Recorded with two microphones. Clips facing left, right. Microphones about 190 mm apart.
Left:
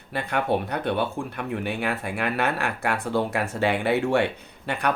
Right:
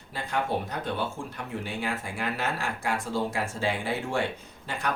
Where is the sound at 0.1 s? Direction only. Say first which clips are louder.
Left 5 dB; 65° left (ahead or behind).